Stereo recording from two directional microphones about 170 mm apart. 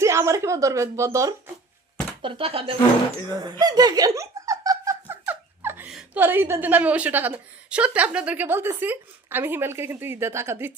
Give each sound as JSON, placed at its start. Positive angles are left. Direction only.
{"t": 0.0, "sound": "speech", "side_deg": -15}
{"t": 2.2, "sound": "speech", "side_deg": -30}
{"t": 3.6, "sound": "speech", "side_deg": -25}